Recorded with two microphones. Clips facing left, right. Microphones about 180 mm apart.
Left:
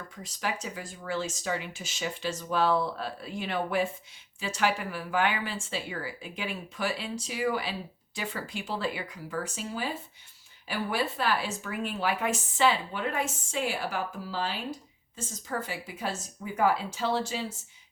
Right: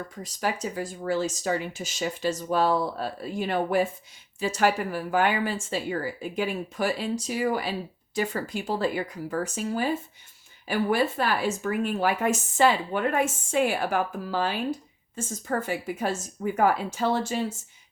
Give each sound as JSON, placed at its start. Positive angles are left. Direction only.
{"t": 0.2, "sound": "speech", "side_deg": -40}